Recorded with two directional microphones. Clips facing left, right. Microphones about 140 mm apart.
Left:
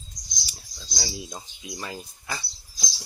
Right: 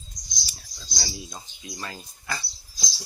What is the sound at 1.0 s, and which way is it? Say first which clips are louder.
Speech: left 2 dB; 20° left (ahead or behind).